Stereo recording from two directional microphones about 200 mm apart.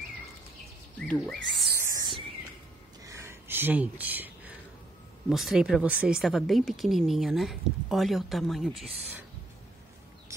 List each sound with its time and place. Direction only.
1.0 s speech: 5° left (ahead or behind)
1.8 s a sound: 15° right (ahead or behind)
5.3 s speech: centre (ahead or behind)